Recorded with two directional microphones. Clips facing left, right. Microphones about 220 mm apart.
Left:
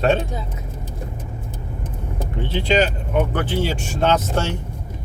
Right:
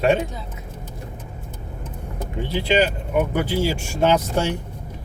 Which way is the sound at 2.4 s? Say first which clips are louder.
Left 1 dB; 10° right (ahead or behind).